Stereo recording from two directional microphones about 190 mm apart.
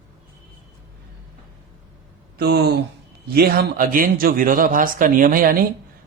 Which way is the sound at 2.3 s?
55° right (ahead or behind).